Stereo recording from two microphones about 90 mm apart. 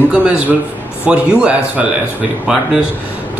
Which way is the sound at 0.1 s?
15° right (ahead or behind).